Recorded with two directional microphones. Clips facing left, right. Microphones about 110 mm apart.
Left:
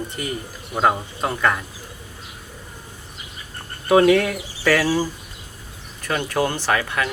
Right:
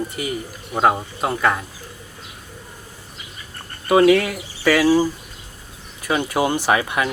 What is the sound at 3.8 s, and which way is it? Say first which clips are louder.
Speech: right 1 dB; centre (ahead or behind).